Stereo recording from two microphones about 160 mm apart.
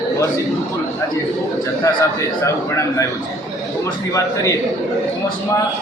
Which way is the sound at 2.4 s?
20° left (ahead or behind).